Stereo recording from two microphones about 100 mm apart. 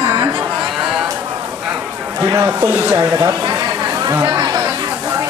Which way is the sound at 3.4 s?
40° right (ahead or behind).